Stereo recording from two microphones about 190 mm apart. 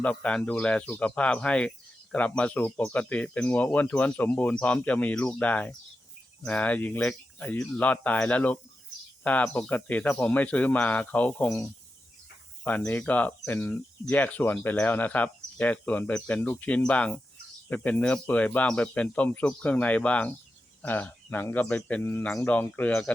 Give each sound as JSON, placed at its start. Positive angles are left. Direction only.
{"t": 0.0, "sound": "speech", "side_deg": 5}